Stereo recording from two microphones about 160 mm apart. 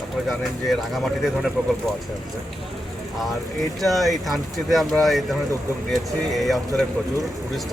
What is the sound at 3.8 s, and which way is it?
Speech, centre (ahead or behind).